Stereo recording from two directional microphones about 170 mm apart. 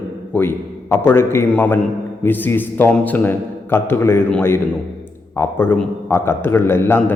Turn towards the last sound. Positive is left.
turn(degrees=15)  # may be behind; listen again after turning